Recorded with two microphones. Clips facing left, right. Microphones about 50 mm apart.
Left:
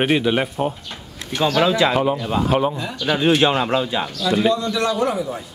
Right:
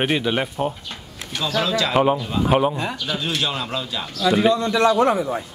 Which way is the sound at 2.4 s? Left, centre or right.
Centre.